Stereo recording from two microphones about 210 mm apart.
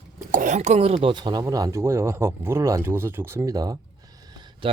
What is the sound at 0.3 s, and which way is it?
Speech, 35° right (ahead or behind).